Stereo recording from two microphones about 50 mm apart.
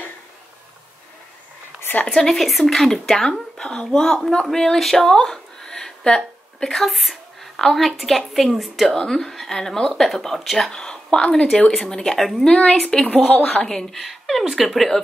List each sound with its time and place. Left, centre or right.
2.0 s a woman's voice: centre
10.7 s speech: centre
12.2 s a woman's voice: centre
12.4 s speech: centre
13.0 s a woman's voice: left
13.7 s a woman's voice: centre